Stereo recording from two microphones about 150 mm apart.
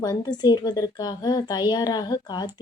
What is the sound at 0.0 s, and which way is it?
Speech, 25° left (ahead or behind).